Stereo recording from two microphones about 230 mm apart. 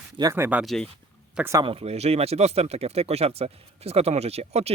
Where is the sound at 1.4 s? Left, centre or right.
Centre.